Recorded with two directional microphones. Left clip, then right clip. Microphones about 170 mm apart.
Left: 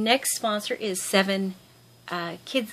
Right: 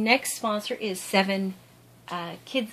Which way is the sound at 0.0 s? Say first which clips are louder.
Even; 35° left (ahead or behind).